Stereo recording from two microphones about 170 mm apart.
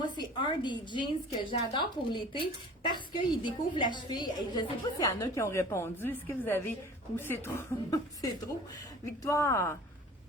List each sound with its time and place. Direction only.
0.0 s a woman's voice: 25° left (ahead or behind)
5.2 s a woman's voice: 15° left (ahead or behind)